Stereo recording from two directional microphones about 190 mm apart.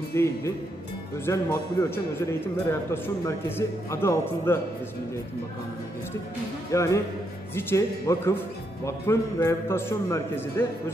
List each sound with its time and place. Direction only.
0.1 s a man's voice: 15° left (ahead or behind)
6.7 s a man's voice: 15° left (ahead or behind)